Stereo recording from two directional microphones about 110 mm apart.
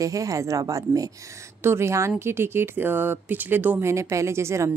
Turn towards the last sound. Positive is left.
turn(degrees=-25)  # may be behind; listen again after turning